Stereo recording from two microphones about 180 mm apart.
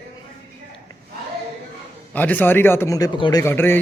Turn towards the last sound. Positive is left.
turn(degrees=15)  # may be behind; listen again after turning